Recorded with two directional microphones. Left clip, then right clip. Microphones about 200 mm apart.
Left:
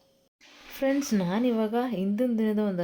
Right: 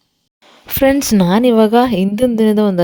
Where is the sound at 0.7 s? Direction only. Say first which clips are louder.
Right 14 dB; 50° right (ahead or behind).